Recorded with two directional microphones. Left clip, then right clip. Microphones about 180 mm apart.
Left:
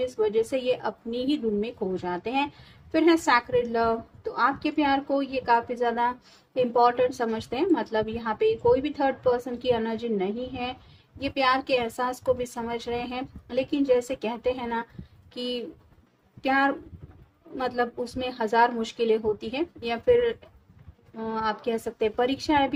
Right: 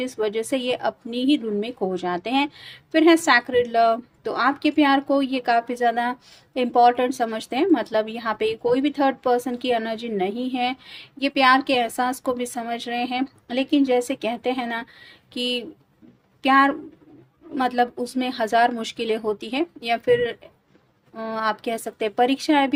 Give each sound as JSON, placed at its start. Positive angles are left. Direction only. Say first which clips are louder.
{"t": 0.0, "sound": "a woman's voice", "louder": "even", "side_deg": -45}